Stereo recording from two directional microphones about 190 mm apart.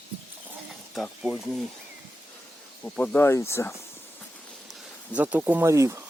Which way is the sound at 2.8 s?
5° left (ahead or behind).